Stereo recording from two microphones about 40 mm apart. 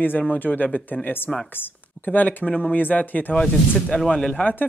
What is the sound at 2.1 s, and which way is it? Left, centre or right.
Speech, left.